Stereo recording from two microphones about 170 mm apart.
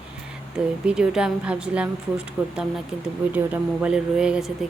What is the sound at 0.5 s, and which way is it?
A woman's voice, 5° right (ahead or behind).